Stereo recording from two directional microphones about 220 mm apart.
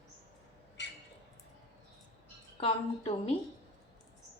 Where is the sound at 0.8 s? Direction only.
50° left (ahead or behind).